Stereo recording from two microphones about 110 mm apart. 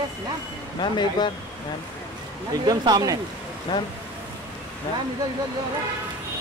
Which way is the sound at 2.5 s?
35° right (ahead or behind).